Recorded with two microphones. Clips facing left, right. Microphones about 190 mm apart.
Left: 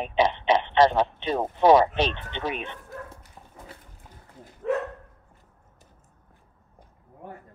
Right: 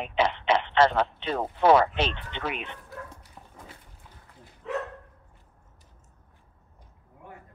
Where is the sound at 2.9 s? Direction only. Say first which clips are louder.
Left 1 dB; 45° left (ahead or behind).